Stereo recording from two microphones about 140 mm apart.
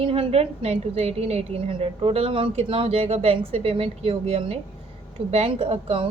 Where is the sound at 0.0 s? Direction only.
45° right (ahead or behind).